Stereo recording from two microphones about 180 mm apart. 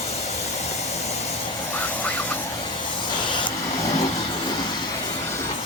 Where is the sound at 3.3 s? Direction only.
25° left (ahead or behind).